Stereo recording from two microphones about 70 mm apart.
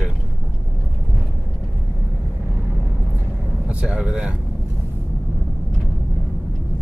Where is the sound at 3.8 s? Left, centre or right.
Centre.